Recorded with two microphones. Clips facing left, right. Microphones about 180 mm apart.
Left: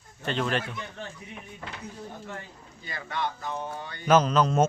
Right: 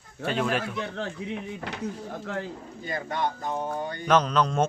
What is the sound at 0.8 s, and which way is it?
Speech, 75° right (ahead or behind).